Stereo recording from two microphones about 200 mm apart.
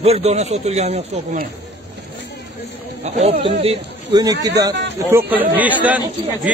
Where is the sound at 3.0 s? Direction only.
35° right (ahead or behind).